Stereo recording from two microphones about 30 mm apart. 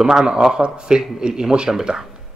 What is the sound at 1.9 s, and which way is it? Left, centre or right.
Speech, right.